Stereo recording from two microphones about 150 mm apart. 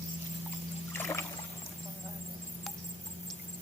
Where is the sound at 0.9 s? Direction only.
20° left (ahead or behind).